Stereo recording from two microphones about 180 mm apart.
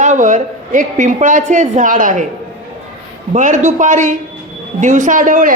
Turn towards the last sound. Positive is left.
turn(degrees=-45)  # may be behind; listen again after turning